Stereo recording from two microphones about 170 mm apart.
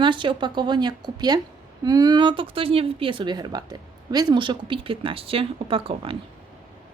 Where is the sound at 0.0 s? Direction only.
30° right (ahead or behind).